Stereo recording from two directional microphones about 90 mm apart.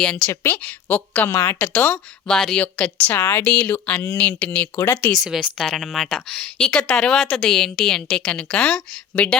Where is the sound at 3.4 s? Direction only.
15° left (ahead or behind).